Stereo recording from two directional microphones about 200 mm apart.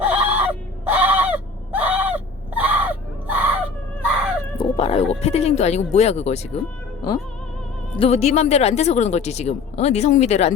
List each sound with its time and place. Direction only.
0.0 s a sound: 10° right (ahead or behind)
0.9 s fowl: 10° right (ahead or behind)
4.5 s speech: 25° left (ahead or behind)
7.9 s speech: 30° left (ahead or behind)